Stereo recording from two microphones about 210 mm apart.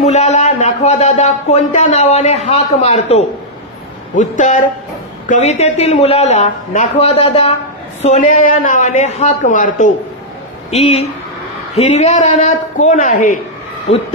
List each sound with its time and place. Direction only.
0.0 s speech: 30° left (ahead or behind)